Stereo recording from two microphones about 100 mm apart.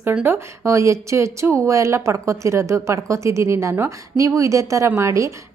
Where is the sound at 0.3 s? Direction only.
30° right (ahead or behind).